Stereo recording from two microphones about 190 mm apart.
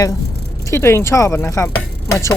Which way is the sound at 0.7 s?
15° left (ahead or behind).